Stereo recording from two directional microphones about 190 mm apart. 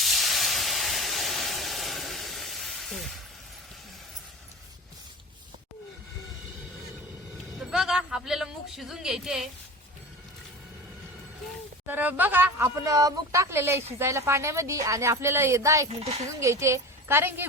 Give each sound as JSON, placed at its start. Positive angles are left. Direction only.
{"t": 0.0, "sound": "steam", "side_deg": 0}
{"t": 7.6, "sound": "a sound", "side_deg": -5}
{"t": 11.9, "sound": "speech", "side_deg": -10}
{"t": 15.9, "sound": "speech", "side_deg": -35}
{"t": 16.4, "sound": "a woman's voice", "side_deg": -15}